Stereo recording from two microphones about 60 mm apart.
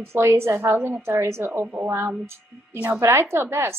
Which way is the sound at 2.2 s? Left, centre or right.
Right.